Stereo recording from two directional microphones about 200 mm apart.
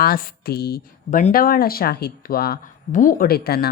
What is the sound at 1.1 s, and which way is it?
A woman's voice, 40° left (ahead or behind).